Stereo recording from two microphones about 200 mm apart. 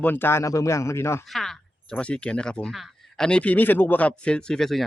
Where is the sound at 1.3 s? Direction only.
Centre (ahead or behind).